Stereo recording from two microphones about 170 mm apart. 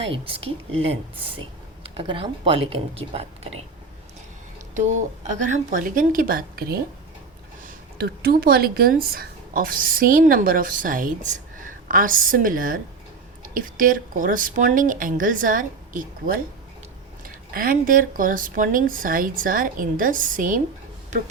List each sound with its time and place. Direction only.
0.1 s speech: 35° right (ahead or behind)
4.7 s speech: 45° right (ahead or behind)